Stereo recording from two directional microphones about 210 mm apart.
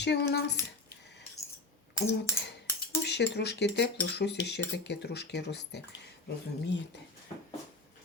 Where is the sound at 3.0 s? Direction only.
55° left (ahead or behind).